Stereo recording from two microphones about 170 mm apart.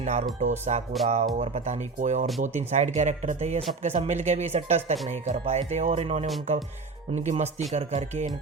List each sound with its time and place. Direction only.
0.0 s speech: 40° right (ahead or behind)